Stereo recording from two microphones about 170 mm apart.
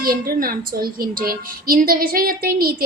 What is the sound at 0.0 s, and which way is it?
A woman's voice, 60° right (ahead or behind).